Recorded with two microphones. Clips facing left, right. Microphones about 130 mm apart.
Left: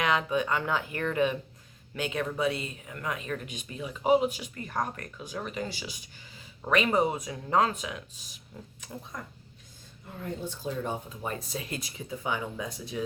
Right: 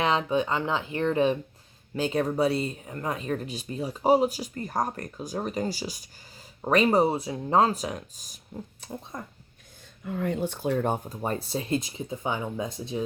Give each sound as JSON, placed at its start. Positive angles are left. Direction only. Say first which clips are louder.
{"t": 0.0, "sound": "speech", "louder": "right 3 dB", "side_deg": -30}
{"t": 9.1, "sound": "speech", "louder": "right 2 dB", "side_deg": -25}
{"t": 10.0, "sound": "speech", "louder": "right 8 dB", "side_deg": -90}